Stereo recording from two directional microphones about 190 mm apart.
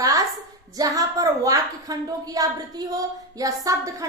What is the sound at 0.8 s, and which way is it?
A woman's voice, 20° right (ahead or behind).